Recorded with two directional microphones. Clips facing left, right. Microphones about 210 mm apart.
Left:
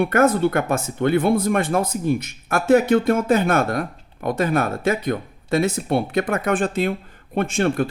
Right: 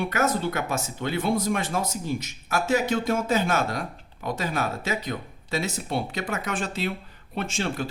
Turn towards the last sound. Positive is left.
turn(degrees=55)  # may be behind; listen again after turning